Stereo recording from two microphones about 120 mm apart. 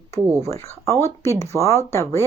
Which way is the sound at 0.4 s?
60° right (ahead or behind).